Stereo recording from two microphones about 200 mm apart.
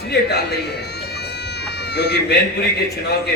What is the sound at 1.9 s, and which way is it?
Speech, 55° left (ahead or behind).